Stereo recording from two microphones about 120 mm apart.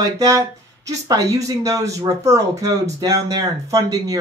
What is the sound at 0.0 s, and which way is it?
Speech, 30° right (ahead or behind).